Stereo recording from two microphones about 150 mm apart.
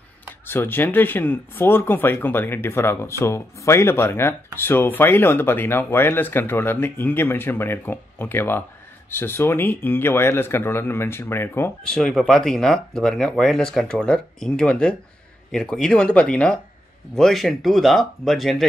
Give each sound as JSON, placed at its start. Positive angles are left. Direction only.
{"t": 0.5, "sound": "speech", "side_deg": 15}
{"t": 11.9, "sound": "speech", "side_deg": 5}